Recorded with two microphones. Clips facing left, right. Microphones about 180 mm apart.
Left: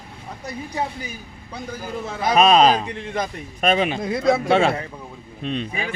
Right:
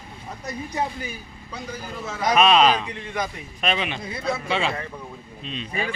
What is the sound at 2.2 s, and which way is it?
A man's voice, 35° left (ahead or behind).